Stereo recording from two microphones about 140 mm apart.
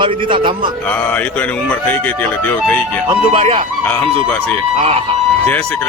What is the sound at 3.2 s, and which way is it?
Speech, 40° right (ahead or behind).